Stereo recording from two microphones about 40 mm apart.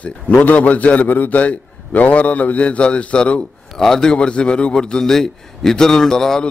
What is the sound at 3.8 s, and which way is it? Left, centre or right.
Speech, centre.